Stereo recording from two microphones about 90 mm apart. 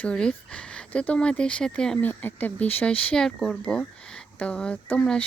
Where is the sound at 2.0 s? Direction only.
20° left (ahead or behind).